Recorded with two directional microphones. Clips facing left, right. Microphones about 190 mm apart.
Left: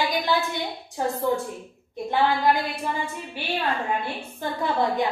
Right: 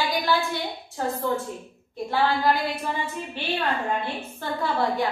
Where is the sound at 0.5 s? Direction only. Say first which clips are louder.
Even; 15° left (ahead or behind).